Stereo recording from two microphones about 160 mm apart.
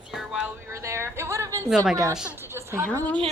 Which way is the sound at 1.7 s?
5° right (ahead or behind).